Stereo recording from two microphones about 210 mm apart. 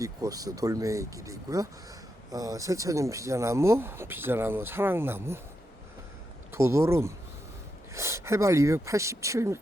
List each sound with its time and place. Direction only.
0.0 s speech: 15° right (ahead or behind)
6.5 s speech: 15° right (ahead or behind)